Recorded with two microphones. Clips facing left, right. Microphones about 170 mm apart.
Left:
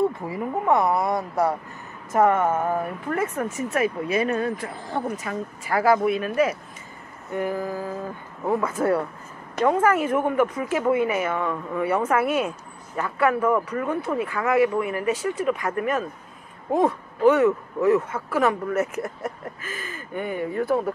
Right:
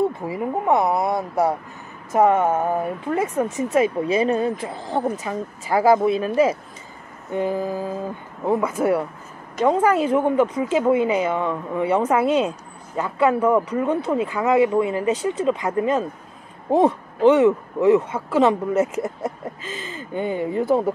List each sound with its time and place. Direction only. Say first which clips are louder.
0.3 s a woman's voice: right 2 dB; 20° right (ahead or behind)